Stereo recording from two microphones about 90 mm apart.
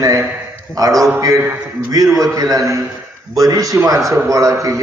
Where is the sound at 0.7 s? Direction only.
40° right (ahead or behind).